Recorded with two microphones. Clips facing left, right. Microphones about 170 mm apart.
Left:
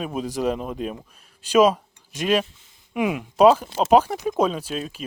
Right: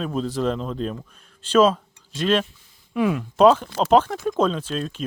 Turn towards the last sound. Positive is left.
turn(degrees=5)  # may be behind; listen again after turning